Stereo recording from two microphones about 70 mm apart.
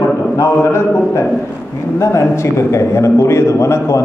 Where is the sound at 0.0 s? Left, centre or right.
Left.